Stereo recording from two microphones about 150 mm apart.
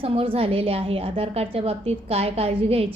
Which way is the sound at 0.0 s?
40° right (ahead or behind).